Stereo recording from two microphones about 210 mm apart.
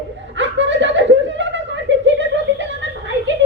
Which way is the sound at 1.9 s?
60° right (ahead or behind).